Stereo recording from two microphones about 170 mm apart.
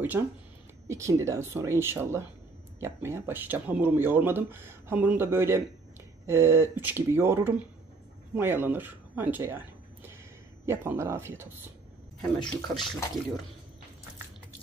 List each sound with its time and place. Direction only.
0.2 s speech: 5° right (ahead or behind)
10.6 s speech: 15° right (ahead or behind)
12.2 s speech: centre (ahead or behind)